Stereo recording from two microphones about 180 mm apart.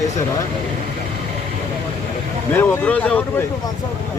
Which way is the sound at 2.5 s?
10° left (ahead or behind).